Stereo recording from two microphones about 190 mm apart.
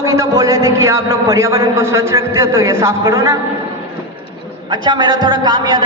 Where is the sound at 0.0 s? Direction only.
20° right (ahead or behind).